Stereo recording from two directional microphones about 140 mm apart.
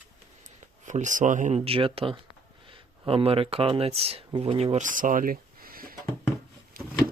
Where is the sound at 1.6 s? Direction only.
40° right (ahead or behind).